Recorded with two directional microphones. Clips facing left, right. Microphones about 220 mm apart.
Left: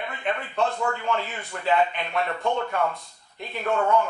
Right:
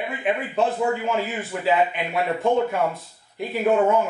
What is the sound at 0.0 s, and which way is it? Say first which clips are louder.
Speech: right 5 dB; 10° right (ahead or behind).